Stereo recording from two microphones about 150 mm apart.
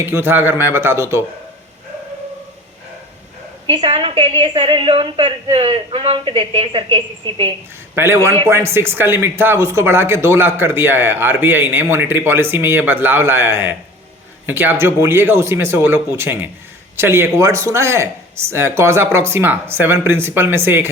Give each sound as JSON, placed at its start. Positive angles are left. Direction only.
{"t": 0.0, "sound": "speech", "side_deg": -15}
{"t": 3.7, "sound": "a woman's voice", "side_deg": -40}
{"t": 7.9, "sound": "speech", "side_deg": -15}